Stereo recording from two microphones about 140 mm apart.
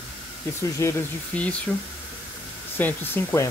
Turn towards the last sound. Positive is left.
turn(degrees=15)  # may be behind; listen again after turning